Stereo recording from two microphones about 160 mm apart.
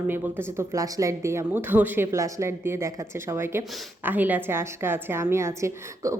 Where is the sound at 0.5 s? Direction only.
20° right (ahead or behind).